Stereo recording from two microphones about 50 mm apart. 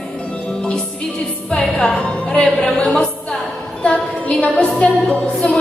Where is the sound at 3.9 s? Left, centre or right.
Left.